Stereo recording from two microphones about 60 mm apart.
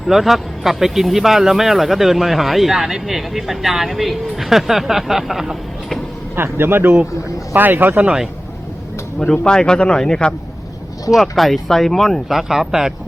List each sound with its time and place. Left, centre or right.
0.0 s speech: centre
6.3 s speech: right
9.1 s speech: centre
11.1 s speech: centre